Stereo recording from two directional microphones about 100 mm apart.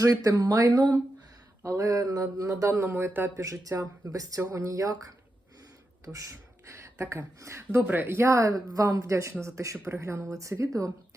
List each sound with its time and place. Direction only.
0.0 s speech: 35° right (ahead or behind)
1.6 s speech: 30° right (ahead or behind)
6.1 s speech: 10° right (ahead or behind)
6.7 s speech: 30° right (ahead or behind)